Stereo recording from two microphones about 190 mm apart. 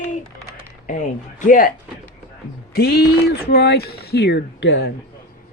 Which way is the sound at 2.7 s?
55° left (ahead or behind).